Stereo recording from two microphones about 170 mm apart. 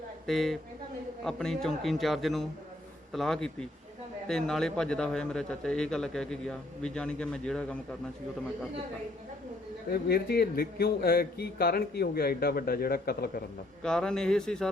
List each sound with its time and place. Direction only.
0.3 s a man's voice: centre (ahead or behind)
9.9 s a man's voice: 65° left (ahead or behind)
13.8 s a man's voice: 5° left (ahead or behind)